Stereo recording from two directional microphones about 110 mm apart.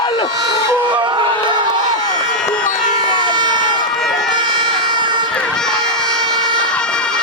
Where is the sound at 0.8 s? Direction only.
45° right (ahead or behind).